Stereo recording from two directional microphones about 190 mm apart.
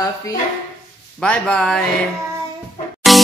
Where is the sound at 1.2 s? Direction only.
5° left (ahead or behind).